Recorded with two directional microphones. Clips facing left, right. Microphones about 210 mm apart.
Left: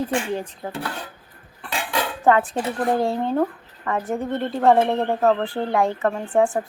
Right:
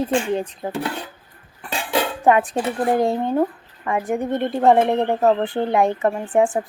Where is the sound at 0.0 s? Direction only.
20° right (ahead or behind).